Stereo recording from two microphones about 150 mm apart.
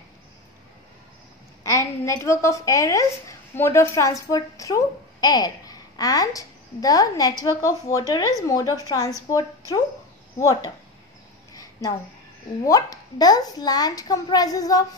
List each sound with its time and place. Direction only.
1.6 s a woman's voice: 20° left (ahead or behind)
12.6 s a woman's voice: 25° left (ahead or behind)